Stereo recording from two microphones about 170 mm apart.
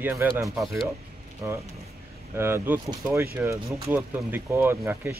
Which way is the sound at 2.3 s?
15° right (ahead or behind).